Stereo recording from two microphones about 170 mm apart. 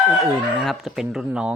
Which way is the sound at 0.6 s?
Centre (ahead or behind).